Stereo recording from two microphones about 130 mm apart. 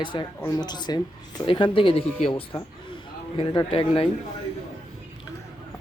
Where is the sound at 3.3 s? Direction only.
40° left (ahead or behind).